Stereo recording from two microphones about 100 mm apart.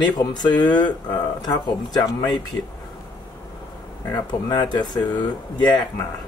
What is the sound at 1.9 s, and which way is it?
Speech, 40° left (ahead or behind).